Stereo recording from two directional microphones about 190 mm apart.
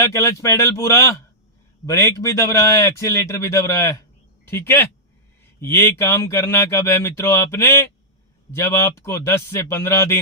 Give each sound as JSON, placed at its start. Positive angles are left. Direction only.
{"t": 0.0, "sound": "speech", "side_deg": 15}